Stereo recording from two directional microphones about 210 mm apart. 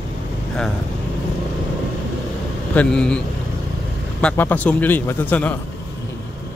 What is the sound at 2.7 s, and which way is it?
Speech, 5° left (ahead or behind).